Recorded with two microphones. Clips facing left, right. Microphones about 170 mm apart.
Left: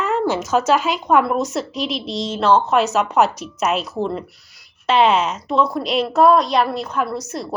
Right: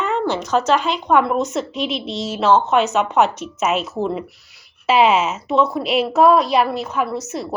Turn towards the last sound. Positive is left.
turn(degrees=0)  # may be behind; listen again after turning